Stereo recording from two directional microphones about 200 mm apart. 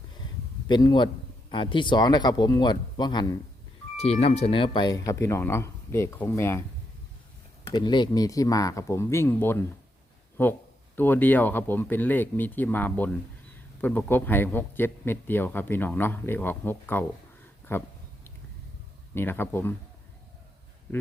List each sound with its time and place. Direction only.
0.7 s speech: 20° left (ahead or behind)
7.6 s speech: 20° left (ahead or behind)
19.1 s speech: 10° left (ahead or behind)